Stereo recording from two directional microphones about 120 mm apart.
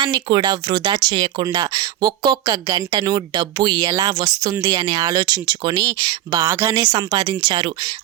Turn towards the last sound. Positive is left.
turn(degrees=-40)  # may be behind; listen again after turning